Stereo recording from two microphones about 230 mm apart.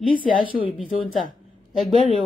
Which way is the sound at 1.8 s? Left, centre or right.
Centre.